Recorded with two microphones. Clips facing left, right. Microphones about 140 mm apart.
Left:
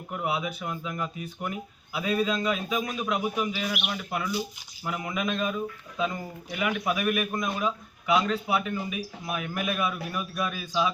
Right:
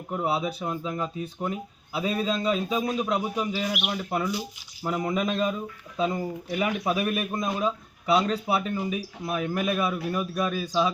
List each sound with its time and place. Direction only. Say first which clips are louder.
0.1 s speech: right 3 dB; 30° right (ahead or behind)